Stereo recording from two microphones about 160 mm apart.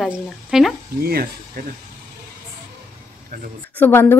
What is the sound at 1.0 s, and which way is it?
Speech, 70° right (ahead or behind).